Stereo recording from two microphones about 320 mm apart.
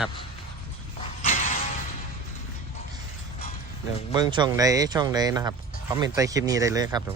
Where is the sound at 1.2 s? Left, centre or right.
Left.